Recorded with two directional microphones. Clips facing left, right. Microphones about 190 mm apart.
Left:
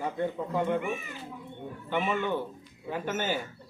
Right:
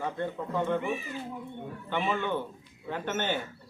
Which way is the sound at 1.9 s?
10° left (ahead or behind).